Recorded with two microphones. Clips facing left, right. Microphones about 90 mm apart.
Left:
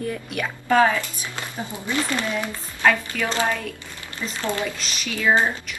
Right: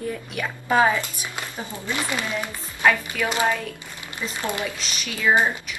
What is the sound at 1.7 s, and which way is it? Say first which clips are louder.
Speech: left 1 dB; 15° left (ahead or behind).